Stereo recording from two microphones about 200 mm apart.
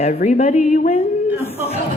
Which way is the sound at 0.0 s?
40° left (ahead or behind).